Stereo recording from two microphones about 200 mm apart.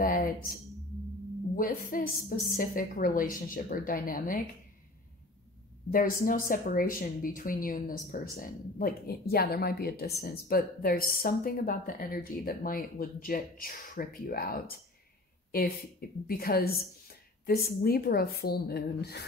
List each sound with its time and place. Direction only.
0.0 s speech: 45° left (ahead or behind)
1.6 s a woman's voice: 45° left (ahead or behind)
5.9 s a woman's voice: 45° left (ahead or behind)
16.3 s a woman's voice: 45° left (ahead or behind)